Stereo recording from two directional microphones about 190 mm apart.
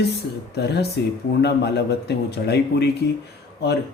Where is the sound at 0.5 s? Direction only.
60° left (ahead or behind).